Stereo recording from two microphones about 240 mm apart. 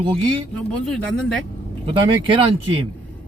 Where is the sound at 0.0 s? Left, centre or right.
Right.